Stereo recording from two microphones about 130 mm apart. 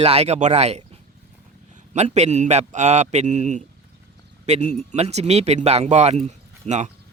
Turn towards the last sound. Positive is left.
turn(degrees=-60)  # may be behind; listen again after turning